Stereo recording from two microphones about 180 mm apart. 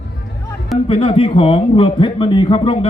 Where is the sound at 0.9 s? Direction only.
30° left (ahead or behind).